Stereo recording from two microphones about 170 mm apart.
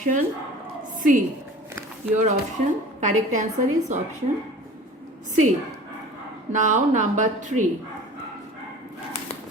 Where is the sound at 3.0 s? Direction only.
45° right (ahead or behind).